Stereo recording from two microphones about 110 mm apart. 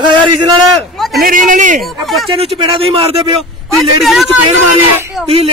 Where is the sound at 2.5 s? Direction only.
55° right (ahead or behind).